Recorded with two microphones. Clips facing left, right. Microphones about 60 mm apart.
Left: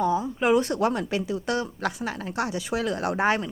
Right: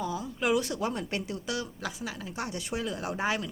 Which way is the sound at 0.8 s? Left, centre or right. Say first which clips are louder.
Left 7 dB; left.